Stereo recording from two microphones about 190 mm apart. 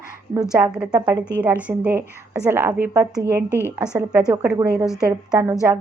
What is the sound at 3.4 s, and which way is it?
Speech, 15° left (ahead or behind).